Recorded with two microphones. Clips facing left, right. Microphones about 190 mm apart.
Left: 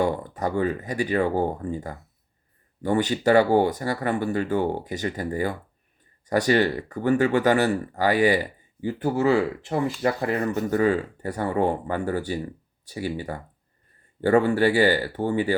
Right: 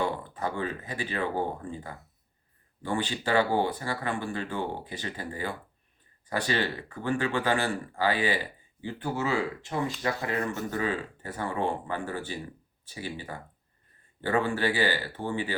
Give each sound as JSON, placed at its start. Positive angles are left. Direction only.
{"t": 0.0, "sound": "speech", "side_deg": 40}